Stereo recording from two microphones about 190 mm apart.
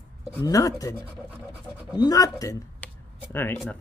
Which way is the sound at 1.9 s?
20° left (ahead or behind).